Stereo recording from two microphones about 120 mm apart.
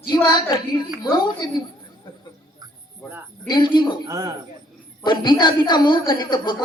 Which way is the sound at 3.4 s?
35° left (ahead or behind).